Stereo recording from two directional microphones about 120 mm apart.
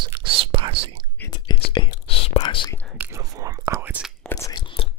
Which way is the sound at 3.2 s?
25° right (ahead or behind).